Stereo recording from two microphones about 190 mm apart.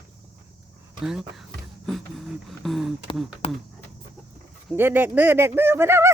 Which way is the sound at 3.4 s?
30° left (ahead or behind).